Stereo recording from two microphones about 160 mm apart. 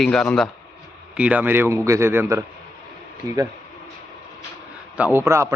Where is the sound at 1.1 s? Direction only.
10° right (ahead or behind).